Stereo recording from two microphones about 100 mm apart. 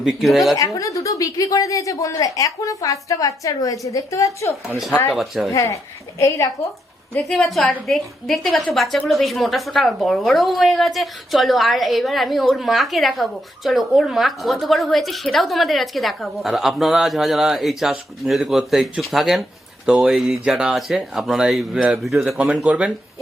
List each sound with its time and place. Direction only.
0.0 s a woman's voice: centre (ahead or behind)
0.5 s a woman's voice: 35° left (ahead or behind)
5.0 s a woman's voice: centre (ahead or behind)
5.5 s a woman's voice: 30° left (ahead or behind)
7.3 s a woman's voice: centre (ahead or behind)
22.4 s speech: 15° right (ahead or behind)